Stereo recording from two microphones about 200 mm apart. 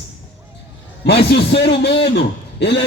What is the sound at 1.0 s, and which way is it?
A man's voice, 55° left (ahead or behind).